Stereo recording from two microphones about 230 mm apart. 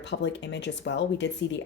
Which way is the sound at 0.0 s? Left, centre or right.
Left.